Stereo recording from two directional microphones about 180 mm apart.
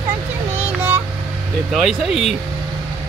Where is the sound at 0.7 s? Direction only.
10° right (ahead or behind).